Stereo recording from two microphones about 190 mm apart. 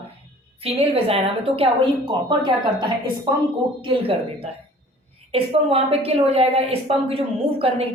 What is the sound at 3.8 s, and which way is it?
A woman's voice, 30° right (ahead or behind).